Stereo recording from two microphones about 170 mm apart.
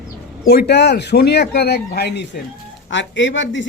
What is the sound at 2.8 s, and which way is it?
Speech, 90° left.